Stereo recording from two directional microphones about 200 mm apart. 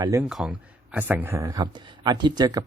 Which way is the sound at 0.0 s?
15° right (ahead or behind).